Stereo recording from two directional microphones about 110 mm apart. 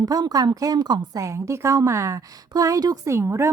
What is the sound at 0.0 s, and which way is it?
A woman's voice, 35° right (ahead or behind).